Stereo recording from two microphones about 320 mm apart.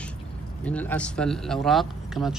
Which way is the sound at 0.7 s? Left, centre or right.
Centre.